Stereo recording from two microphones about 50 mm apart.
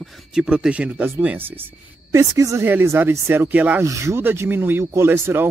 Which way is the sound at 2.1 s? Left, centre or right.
Right.